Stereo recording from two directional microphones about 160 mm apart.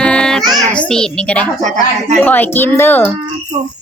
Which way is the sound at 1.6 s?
50° right (ahead or behind).